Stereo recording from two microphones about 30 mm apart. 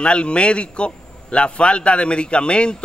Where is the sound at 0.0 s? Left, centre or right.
Left.